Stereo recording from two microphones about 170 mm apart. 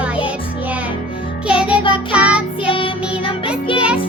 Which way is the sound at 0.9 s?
30° left (ahead or behind).